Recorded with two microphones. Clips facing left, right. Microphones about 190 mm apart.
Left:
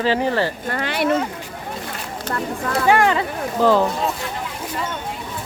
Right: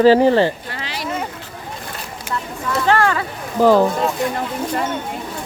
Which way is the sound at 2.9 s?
20° left (ahead or behind).